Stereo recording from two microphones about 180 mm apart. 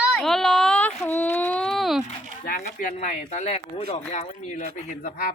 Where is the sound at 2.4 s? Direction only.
50° left (ahead or behind).